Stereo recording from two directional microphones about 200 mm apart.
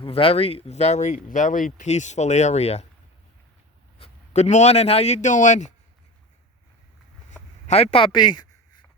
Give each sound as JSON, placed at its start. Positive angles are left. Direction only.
{"t": 0.0, "sound": "speech", "side_deg": 30}
{"t": 3.9, "sound": "a man's voice", "side_deg": 30}
{"t": 7.7, "sound": "speech", "side_deg": 30}